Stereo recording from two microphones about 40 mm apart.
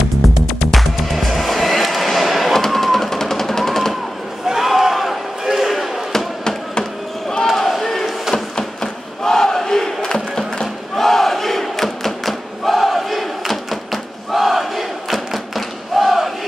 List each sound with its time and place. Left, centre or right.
0.6 s music: centre
4.5 s slam: centre
6.1 s chop: centre
7.5 s a sound: centre
10.3 s crowd: centre